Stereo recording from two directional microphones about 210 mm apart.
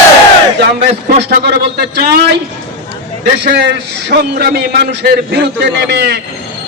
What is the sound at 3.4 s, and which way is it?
A man's voice, 55° right (ahead or behind).